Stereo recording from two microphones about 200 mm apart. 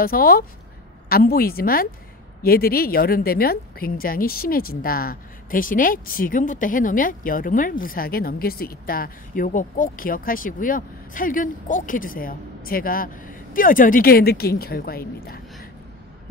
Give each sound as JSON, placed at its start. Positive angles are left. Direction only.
{"t": 0.0, "sound": "a woman's voice", "side_deg": 45}